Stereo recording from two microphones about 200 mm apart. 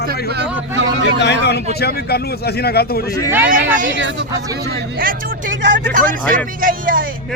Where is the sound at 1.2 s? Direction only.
55° left (ahead or behind).